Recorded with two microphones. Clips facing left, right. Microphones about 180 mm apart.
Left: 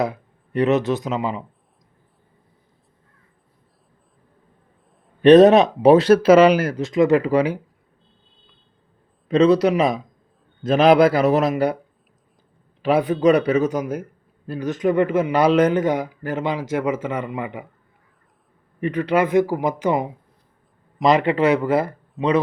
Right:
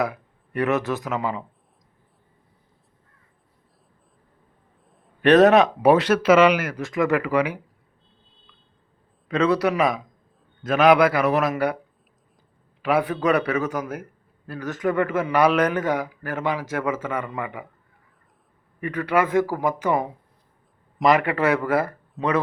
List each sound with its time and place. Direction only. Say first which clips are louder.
0.0 s speech: left 2 dB; 20° left (ahead or behind)
5.2 s a man's voice: left 4 dB; 20° left (ahead or behind)
6.8 s a man's voice: left 5 dB; 20° left (ahead or behind)
9.3 s a man's voice: left 5 dB; 20° left (ahead or behind)
12.8 s a man's voice: left 5 dB; 20° left (ahead or behind)
18.8 s a man's voice: left 3 dB; 20° left (ahead or behind)
22.2 s speech: left 4 dB; centre (ahead or behind)